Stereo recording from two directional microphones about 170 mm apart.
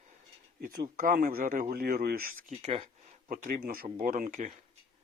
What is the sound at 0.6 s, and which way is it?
Speech, 55° right (ahead or behind).